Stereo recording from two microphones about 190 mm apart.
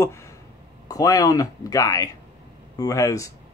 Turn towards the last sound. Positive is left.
turn(degrees=15)  # may be behind; listen again after turning